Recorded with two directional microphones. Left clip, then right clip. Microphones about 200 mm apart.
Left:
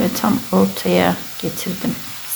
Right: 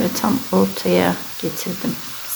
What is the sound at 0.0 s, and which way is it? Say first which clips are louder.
Speech: left 1 dB; centre (ahead or behind).